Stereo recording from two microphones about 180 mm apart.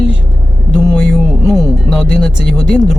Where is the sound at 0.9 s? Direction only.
Centre (ahead or behind).